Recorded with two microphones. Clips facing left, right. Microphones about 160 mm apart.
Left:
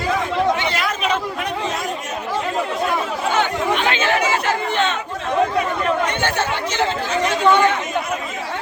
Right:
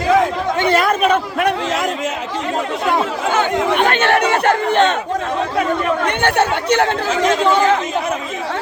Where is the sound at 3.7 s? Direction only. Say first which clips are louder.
Right 5 dB; 55° right (ahead or behind).